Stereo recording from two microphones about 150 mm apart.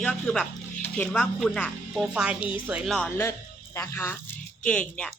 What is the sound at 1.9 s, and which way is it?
A woman's voice, 5° right (ahead or behind).